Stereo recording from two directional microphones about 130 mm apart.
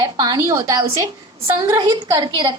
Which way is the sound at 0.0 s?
30° right (ahead or behind).